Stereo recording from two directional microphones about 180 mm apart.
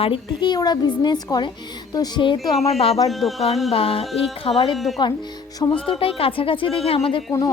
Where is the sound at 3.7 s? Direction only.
30° left (ahead or behind).